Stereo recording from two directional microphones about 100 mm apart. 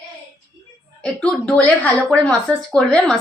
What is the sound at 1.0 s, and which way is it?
A woman's voice, 10° left (ahead or behind).